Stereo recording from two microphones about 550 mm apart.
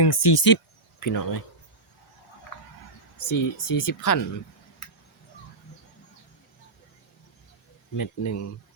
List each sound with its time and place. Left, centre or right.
0.0 s speech: left
3.2 s speech: left
7.9 s speech: left